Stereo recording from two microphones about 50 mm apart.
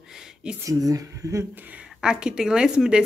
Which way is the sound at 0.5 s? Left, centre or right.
Centre.